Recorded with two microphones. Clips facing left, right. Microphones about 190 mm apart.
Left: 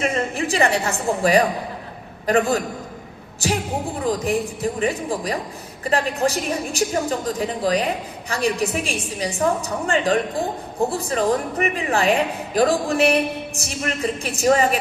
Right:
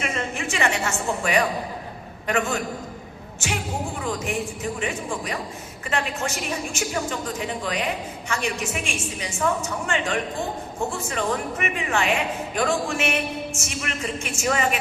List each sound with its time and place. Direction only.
0.0 s a woman's voice: 35° left (ahead or behind)